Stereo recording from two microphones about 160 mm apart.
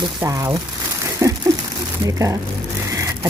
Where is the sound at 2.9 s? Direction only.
20° right (ahead or behind).